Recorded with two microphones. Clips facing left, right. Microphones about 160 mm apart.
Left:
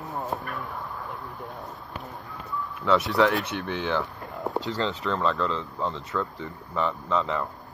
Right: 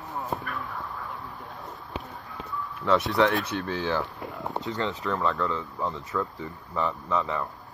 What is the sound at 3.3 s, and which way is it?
Speech, 20° left (ahead or behind).